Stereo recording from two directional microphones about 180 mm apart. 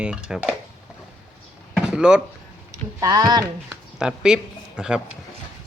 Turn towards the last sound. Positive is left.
turn(degrees=-5)  # may be behind; listen again after turning